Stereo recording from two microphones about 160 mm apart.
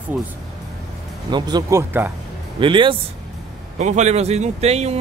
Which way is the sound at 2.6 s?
30° right (ahead or behind).